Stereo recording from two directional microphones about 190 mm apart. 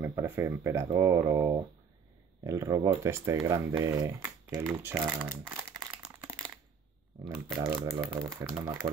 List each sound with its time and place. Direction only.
0.0 s speech: 15° right (ahead or behind)
5.3 s crumpling: 10° right (ahead or behind)
7.5 s speech: 15° right (ahead or behind)